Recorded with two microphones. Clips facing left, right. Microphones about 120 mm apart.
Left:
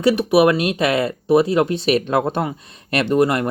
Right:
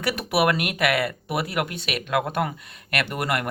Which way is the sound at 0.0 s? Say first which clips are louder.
Left 8 dB; 20° left (ahead or behind).